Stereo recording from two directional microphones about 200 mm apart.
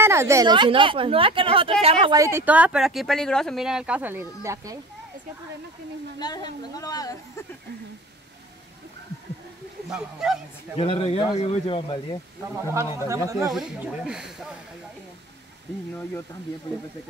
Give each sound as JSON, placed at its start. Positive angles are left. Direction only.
{"t": 0.0, "sound": "a woman's voice", "side_deg": -15}
{"t": 2.1, "sound": "speech", "side_deg": -15}
{"t": 6.1, "sound": "a woman's voice", "side_deg": 20}
{"t": 9.8, "sound": "speech", "side_deg": -5}
{"t": 10.8, "sound": "a woman's voice", "side_deg": 30}
{"t": 12.5, "sound": "speech", "side_deg": -15}
{"t": 13.5, "sound": "speech", "side_deg": -5}